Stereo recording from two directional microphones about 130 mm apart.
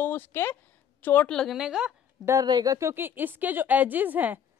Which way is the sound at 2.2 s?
30° right (ahead or behind).